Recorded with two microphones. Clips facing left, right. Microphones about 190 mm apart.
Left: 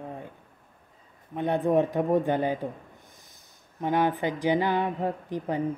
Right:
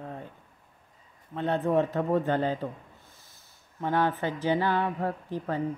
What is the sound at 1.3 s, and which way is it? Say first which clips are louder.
A woman's voice: left 2 dB; 15° left (ahead or behind).